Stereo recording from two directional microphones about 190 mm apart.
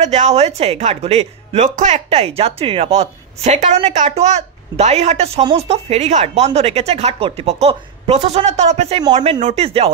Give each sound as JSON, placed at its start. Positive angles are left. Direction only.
{"t": 0.0, "sound": "speech", "side_deg": -35}